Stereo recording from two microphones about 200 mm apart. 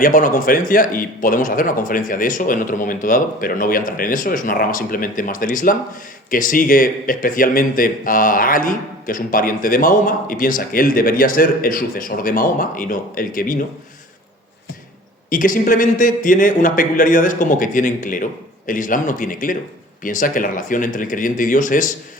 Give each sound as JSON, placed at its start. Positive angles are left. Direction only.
{"t": 0.0, "sound": "speech", "side_deg": 45}
{"t": 15.3, "sound": "speech", "side_deg": 40}